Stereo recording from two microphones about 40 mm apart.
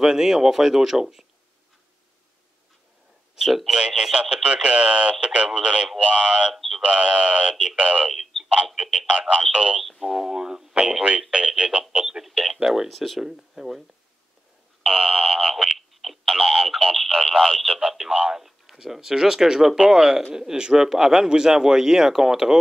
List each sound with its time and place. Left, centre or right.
0.0 s speech: centre
3.3 s speech: centre
6.5 s speech: centre
6.8 s speech: right
8.1 s a sound: centre
9.5 s speech: right
9.8 s speech: centre
12.9 s speech: centre
14.9 s speech: right
15.1 s speech: centre
17.7 s speech: centre